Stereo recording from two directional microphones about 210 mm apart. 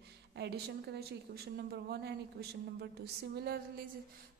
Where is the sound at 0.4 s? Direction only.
55° right (ahead or behind).